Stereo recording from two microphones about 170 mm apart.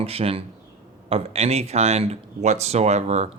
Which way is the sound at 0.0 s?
35° right (ahead or behind).